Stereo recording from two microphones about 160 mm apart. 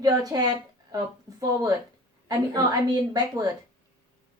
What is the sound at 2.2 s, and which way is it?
A woman's voice, 25° right (ahead or behind).